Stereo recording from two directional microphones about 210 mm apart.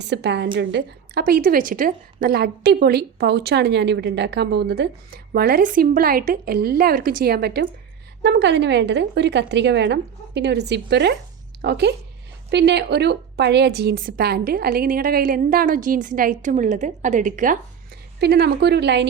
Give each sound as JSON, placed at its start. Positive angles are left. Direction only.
{"t": 0.0, "sound": "a woman's voice", "side_deg": -55}
{"t": 18.2, "sound": "a woman's voice", "side_deg": -50}